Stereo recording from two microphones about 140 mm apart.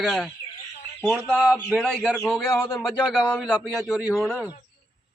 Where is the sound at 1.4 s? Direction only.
5° right (ahead or behind).